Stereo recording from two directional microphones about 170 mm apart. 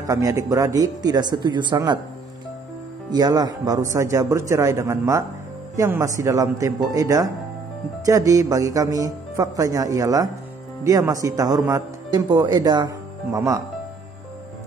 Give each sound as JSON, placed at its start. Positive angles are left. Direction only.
{"t": 0.0, "sound": "speech", "side_deg": -20}
{"t": 3.1, "sound": "speech", "side_deg": -25}